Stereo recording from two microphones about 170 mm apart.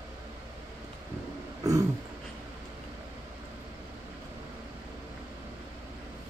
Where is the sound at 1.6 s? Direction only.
20° right (ahead or behind).